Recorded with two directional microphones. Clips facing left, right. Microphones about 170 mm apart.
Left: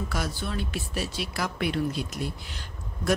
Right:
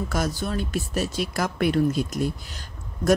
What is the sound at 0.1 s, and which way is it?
Speech, 45° right (ahead or behind).